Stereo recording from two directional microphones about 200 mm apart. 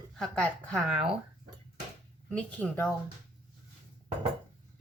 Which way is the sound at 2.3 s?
5° left (ahead or behind).